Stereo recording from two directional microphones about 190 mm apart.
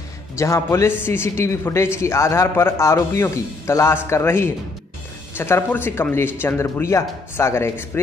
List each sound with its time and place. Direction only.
0.4 s speech: 15° left (ahead or behind)